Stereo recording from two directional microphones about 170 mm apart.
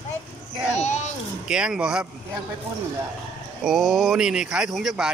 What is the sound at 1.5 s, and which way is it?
Speech, 5° right (ahead or behind).